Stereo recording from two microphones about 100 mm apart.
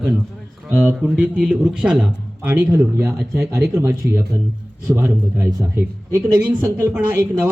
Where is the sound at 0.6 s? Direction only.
15° right (ahead or behind).